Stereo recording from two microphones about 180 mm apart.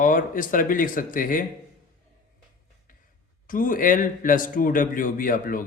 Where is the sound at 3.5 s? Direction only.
50° left (ahead or behind).